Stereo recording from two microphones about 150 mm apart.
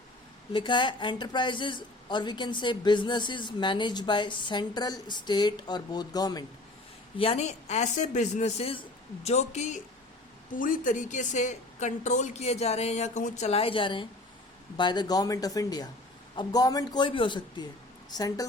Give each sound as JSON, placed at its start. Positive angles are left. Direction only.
{"t": 0.5, "sound": "a woman's voice", "side_deg": 30}
{"t": 7.2, "sound": "a woman's voice", "side_deg": 40}
{"t": 10.5, "sound": "a woman's voice", "side_deg": 65}